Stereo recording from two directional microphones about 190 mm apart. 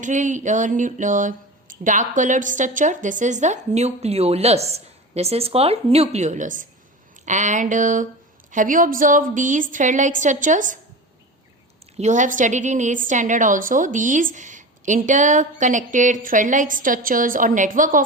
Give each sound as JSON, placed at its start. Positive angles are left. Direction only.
{"t": 0.0, "sound": "speech", "side_deg": -40}
{"t": 11.9, "sound": "speech", "side_deg": -40}